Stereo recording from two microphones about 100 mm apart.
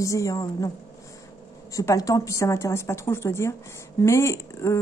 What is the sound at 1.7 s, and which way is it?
A woman's voice, 35° left (ahead or behind).